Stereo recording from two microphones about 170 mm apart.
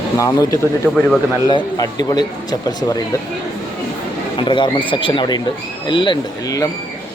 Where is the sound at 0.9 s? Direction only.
10° left (ahead or behind).